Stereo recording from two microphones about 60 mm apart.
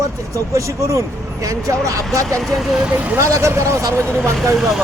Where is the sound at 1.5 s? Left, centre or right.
Right.